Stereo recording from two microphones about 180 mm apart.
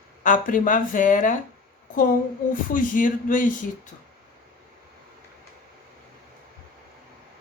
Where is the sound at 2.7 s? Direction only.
50° left (ahead or behind).